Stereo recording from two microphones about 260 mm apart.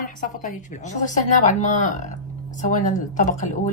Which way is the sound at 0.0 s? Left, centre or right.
Left.